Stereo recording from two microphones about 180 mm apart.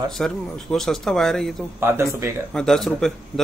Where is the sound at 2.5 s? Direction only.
5° left (ahead or behind).